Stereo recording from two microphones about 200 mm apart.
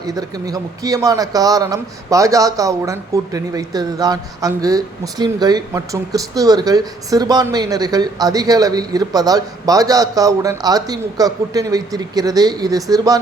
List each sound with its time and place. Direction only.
0.0 s speech: 20° right (ahead or behind)